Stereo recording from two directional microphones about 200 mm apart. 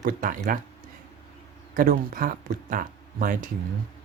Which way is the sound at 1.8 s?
45° right (ahead or behind).